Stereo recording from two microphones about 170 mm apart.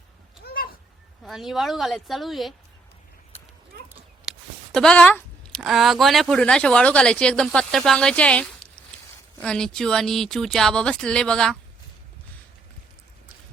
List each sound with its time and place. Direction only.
0.4 s cat: 60° left (ahead or behind)
1.2 s speech: centre (ahead or behind)
3.3 s a sound: 35° left (ahead or behind)
3.8 s speech: centre (ahead or behind)